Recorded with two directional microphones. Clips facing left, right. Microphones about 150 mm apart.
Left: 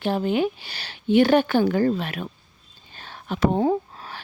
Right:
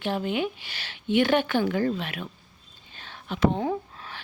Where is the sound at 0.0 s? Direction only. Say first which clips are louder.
Left 5 dB; 40° left (ahead or behind).